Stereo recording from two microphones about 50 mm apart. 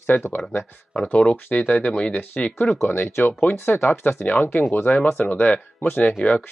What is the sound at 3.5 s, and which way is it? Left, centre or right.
Speech, left.